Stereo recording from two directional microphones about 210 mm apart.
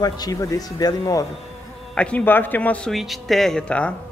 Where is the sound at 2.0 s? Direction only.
5° left (ahead or behind).